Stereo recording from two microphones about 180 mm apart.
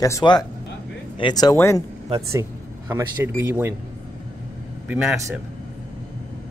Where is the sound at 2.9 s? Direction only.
10° right (ahead or behind).